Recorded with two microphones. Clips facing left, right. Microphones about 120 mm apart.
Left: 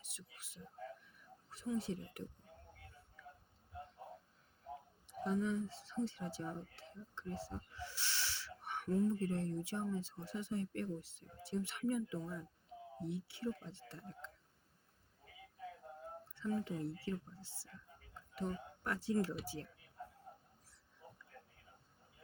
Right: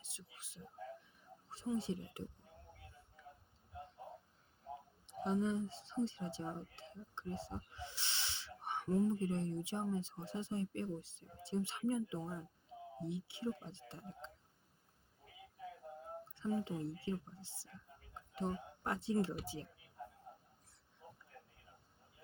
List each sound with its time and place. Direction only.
0.0 s speech: 25° right (ahead or behind)
5.0 s speech: 25° right (ahead or behind)
16.3 s speech: 25° right (ahead or behind)